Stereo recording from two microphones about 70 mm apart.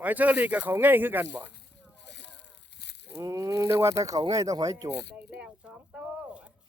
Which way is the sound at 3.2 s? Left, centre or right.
Right.